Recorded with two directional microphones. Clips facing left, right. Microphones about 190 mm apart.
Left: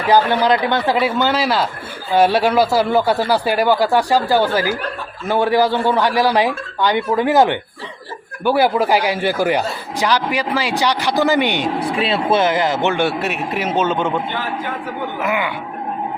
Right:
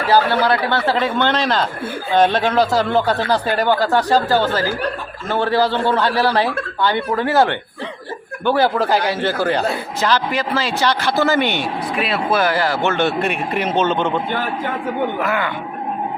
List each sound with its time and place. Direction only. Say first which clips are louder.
0.1 s speech: left 2 dB; 15° left (ahead or behind)
11.8 s speech: left 2 dB; 30° left (ahead or behind); by 14.2 s 10° left (ahead or behind)
15.2 s speech: even; 15° left (ahead or behind)